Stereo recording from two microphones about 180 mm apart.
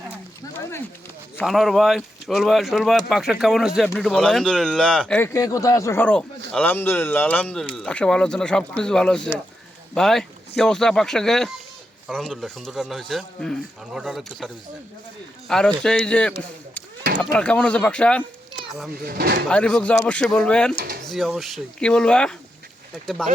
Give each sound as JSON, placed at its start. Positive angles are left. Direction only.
{"t": 1.5, "sound": "speech", "side_deg": 0}
{"t": 5.3, "sound": "speech", "side_deg": 20}
{"t": 17.3, "sound": "speech", "side_deg": 5}
{"t": 19.0, "sound": "speech", "side_deg": -55}
{"t": 19.5, "sound": "speech", "side_deg": 5}